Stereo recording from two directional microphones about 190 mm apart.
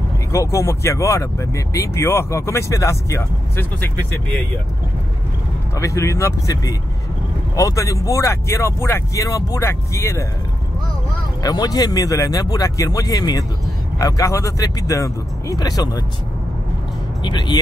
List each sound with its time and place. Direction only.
0.3 s speech: 15° left (ahead or behind)
5.8 s speech: 15° left (ahead or behind)
11.4 s speech: 20° left (ahead or behind)
17.2 s speech: 25° left (ahead or behind)